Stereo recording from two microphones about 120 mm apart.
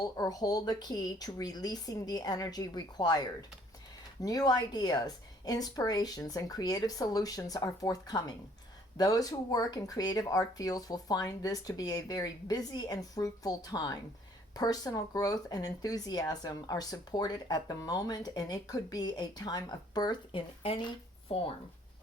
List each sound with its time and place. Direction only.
0.0 s speech: 35° left (ahead or behind)